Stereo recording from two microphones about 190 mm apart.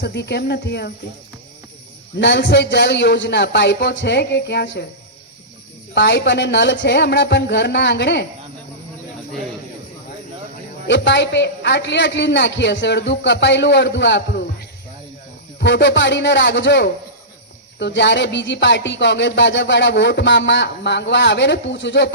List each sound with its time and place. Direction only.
0.0 s a man's voice: 60° left (ahead or behind)
2.1 s a man's voice: 70° left (ahead or behind)
5.9 s a man's voice: 65° left (ahead or behind)
10.8 s speech: 70° left (ahead or behind)
15.5 s speech: 65° left (ahead or behind)